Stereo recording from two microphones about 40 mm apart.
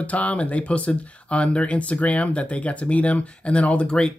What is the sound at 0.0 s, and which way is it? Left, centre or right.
Speech, left.